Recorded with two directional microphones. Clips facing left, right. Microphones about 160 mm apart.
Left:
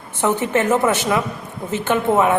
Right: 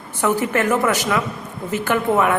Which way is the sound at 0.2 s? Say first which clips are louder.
Left 1 dB; 25° left (ahead or behind).